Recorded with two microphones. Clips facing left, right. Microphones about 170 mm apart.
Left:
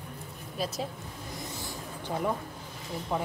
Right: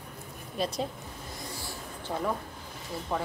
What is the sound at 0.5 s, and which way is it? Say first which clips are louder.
Speech: right 2 dB; centre (ahead or behind).